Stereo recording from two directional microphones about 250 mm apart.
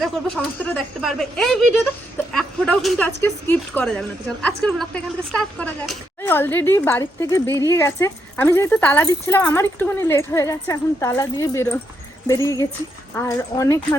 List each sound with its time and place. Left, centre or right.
0.6 s a woman's voice: centre